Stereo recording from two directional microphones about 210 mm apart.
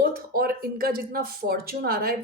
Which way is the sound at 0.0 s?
45° right (ahead or behind).